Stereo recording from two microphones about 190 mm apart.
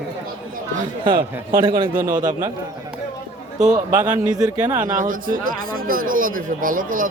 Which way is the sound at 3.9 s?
10° right (ahead or behind).